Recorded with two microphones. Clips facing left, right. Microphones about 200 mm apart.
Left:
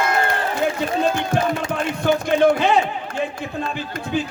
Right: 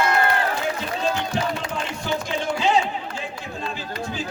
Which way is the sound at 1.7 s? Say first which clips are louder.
Left 7 dB; 60° left (ahead or behind).